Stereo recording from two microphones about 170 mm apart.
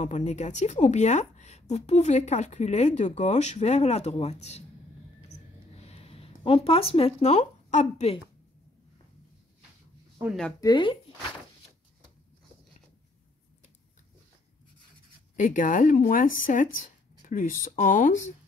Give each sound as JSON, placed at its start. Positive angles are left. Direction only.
{"t": 0.0, "sound": "a woman's voice", "side_deg": 45}
{"t": 5.9, "sound": "speech", "side_deg": 35}
{"t": 10.2, "sound": "speech", "side_deg": -15}
{"t": 10.6, "sound": "speech", "side_deg": 25}
{"t": 15.3, "sound": "speech", "side_deg": 50}